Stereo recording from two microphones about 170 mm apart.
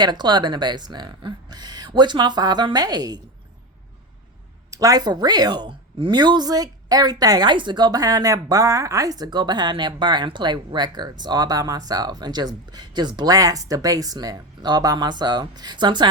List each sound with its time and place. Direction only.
0.0 s a woman's voice: 25° right (ahead or behind)
4.7 s a woman's voice: 20° right (ahead or behind)